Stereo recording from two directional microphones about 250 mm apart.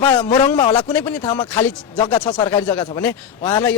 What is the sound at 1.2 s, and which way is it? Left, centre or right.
Speech, centre.